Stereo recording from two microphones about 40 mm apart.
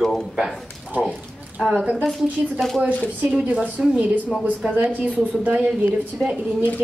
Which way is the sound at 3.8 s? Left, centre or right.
Centre.